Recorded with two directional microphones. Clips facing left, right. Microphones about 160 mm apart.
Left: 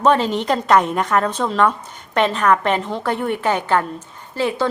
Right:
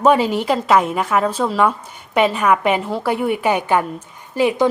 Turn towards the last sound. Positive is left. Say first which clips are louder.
# right 4 dB
turn(degrees=-15)  # may be behind; listen again after turning